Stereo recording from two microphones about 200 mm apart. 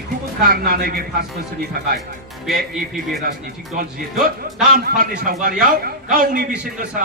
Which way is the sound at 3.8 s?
45° right (ahead or behind).